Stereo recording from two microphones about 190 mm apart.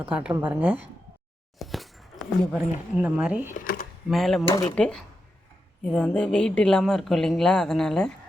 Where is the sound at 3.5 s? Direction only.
45° left (ahead or behind).